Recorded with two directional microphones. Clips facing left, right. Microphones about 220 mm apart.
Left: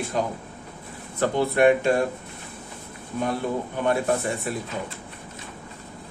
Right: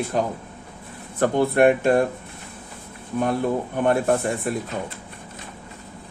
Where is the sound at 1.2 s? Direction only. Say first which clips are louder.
Right 3 dB; 50° right (ahead or behind).